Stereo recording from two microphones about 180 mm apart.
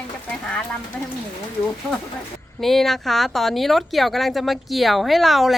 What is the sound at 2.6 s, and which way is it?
Speech, centre (ahead or behind).